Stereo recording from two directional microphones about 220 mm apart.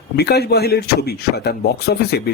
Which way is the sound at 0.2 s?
45° left (ahead or behind).